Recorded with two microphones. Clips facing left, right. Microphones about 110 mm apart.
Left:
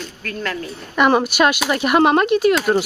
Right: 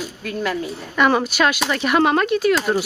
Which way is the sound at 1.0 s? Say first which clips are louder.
Left 2 dB; 15° left (ahead or behind).